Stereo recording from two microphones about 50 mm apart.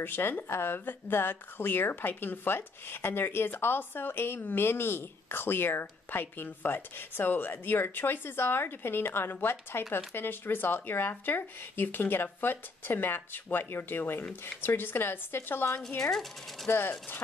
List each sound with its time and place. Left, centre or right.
0.0 s speech: left
16.1 s speech: centre
16.6 s speech: left